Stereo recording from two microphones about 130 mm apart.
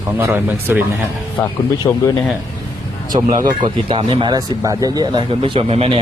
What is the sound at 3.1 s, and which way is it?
Speech, 35° right (ahead or behind).